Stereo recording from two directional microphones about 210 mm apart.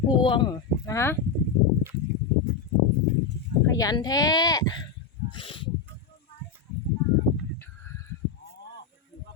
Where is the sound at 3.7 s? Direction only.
15° left (ahead or behind).